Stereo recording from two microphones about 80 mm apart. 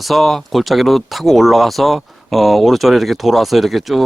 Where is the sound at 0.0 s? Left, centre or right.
Centre.